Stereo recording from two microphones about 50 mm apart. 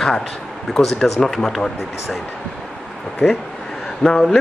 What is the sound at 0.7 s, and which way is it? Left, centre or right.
Speech, centre.